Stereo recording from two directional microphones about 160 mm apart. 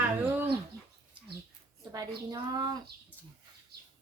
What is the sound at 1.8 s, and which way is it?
A woman's voice, 20° right (ahead or behind).